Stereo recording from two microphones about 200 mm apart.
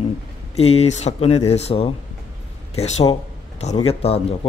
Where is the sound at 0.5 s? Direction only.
30° left (ahead or behind).